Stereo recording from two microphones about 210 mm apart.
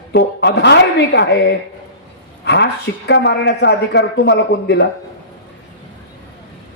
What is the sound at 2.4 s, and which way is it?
Speech, 50° left (ahead or behind).